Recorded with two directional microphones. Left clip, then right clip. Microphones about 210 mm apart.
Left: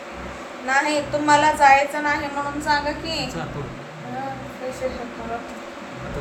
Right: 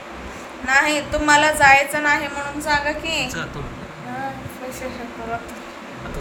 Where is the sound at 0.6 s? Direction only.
25° right (ahead or behind).